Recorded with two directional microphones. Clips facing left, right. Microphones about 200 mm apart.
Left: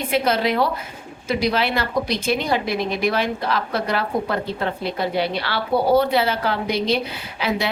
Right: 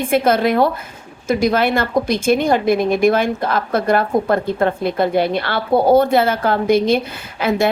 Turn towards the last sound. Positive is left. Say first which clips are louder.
# right 6 dB
turn(degrees=-50)  # may be behind; listen again after turning